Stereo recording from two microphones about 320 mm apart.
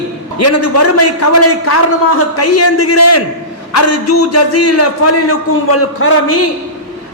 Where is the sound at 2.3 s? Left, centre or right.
Left.